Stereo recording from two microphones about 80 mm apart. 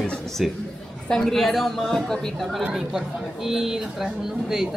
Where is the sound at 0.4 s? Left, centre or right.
Centre.